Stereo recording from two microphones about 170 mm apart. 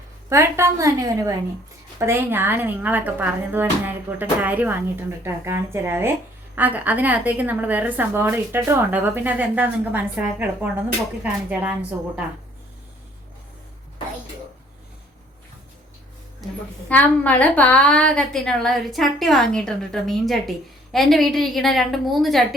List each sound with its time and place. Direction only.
0.3 s speech: 15° right (ahead or behind)
16.9 s a woman's voice: 10° left (ahead or behind)